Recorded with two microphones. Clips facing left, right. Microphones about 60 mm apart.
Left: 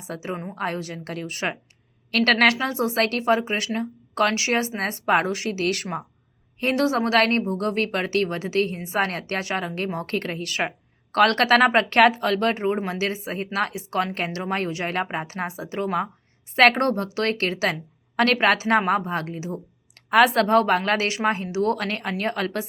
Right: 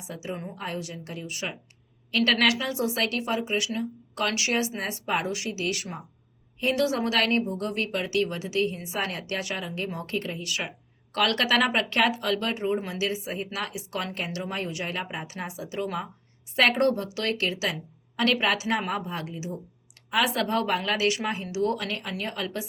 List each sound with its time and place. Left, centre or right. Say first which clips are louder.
0.1 s a woman's voice: left 4 dB; left
4.8 s a woman's voice: left 7 dB; left
6.6 s a woman's voice: left 3 dB; left
9.6 s a woman's voice: left 5 dB; left